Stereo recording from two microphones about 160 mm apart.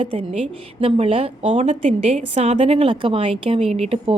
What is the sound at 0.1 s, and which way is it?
A woman's voice, 40° right (ahead or behind).